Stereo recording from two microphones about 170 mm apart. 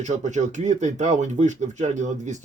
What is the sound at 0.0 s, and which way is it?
Speech, 45° right (ahead or behind).